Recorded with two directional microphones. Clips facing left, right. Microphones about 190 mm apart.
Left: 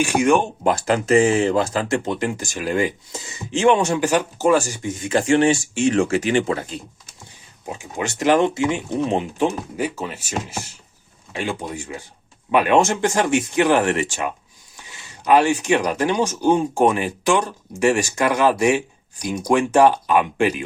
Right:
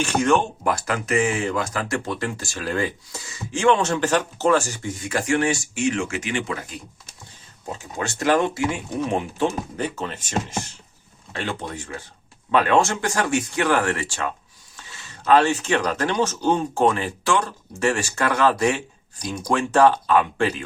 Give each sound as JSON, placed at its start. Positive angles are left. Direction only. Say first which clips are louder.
{"t": 0.0, "sound": "speech", "louder": "left 3 dB", "side_deg": 10}
{"t": 7.7, "sound": "speech", "louder": "left 2 dB", "side_deg": 15}